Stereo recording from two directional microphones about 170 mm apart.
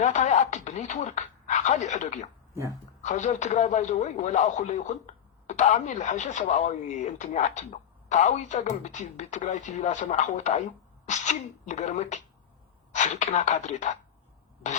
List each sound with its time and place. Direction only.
0.0 s a man's voice: 45° left (ahead or behind)